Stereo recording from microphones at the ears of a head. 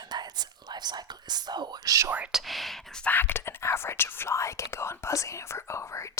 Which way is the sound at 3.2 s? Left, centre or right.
Left.